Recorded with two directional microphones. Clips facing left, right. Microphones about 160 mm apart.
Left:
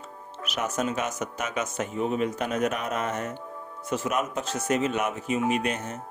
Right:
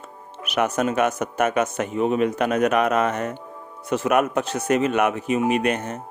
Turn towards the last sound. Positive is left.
turn(degrees=-60)  # may be behind; listen again after turning